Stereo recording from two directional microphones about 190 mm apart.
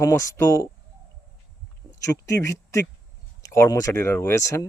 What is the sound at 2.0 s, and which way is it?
Speech, 15° left (ahead or behind).